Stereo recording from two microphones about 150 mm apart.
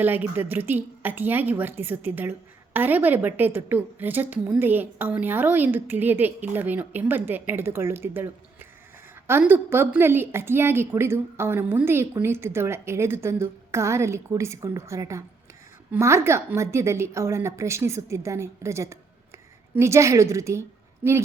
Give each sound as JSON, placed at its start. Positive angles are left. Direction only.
{"t": 0.0, "sound": "a woman's voice", "side_deg": -10}
{"t": 9.4, "sound": "a woman's voice", "side_deg": -15}